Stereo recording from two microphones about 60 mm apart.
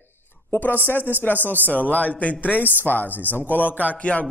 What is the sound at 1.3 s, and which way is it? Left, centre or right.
Speech, right.